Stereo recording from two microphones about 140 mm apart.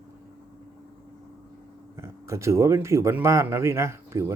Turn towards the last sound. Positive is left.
turn(degrees=-20)  # may be behind; listen again after turning